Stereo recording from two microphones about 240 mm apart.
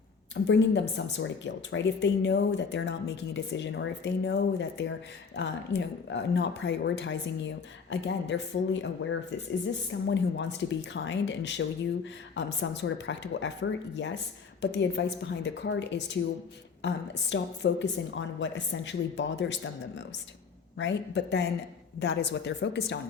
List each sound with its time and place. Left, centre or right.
0.4 s speech: left